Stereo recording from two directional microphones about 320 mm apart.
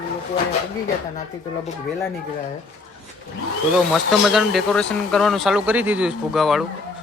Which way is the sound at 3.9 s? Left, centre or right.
Centre.